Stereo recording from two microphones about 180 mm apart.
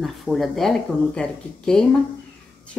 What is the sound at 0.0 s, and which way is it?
Speech, centre (ahead or behind).